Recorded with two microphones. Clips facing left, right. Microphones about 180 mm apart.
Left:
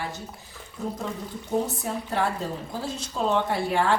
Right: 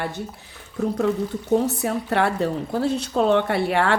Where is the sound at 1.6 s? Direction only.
70° right (ahead or behind).